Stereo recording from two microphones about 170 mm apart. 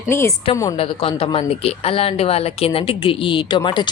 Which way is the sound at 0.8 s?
35° left (ahead or behind).